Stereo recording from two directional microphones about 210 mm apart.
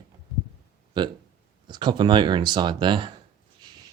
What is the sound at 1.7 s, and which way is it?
Speech, 20° right (ahead or behind).